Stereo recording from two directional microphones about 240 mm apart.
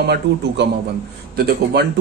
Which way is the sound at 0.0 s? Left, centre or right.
Right.